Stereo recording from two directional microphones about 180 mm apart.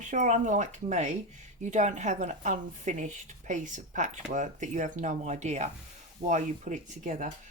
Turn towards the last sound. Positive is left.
turn(degrees=-45)  # may be behind; listen again after turning